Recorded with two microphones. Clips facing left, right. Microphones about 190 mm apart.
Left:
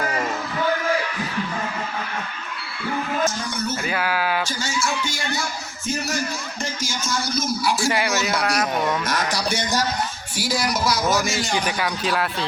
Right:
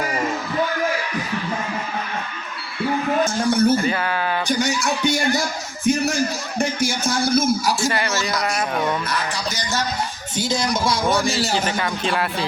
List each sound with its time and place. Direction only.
3.5 s speech: 55° right (ahead or behind)
3.8 s speech: 5° left (ahead or behind)
4.5 s speech: 15° right (ahead or behind)
6.6 s speech: 60° right (ahead or behind)
7.9 s speech: 15° left (ahead or behind)
9.0 s a sound: 45° left (ahead or behind)
10.3 s music: 25° right (ahead or behind)
11.0 s speech: centre (ahead or behind)